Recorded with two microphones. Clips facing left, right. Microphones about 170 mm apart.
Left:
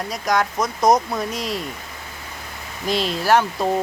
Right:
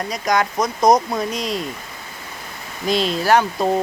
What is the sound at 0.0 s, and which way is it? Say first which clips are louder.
Speech: right 1 dB; centre (ahead or behind).